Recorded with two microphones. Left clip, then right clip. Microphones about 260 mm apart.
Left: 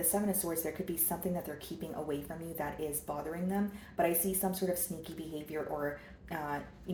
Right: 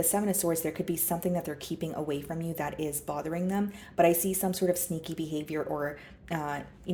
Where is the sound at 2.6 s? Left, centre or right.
Right.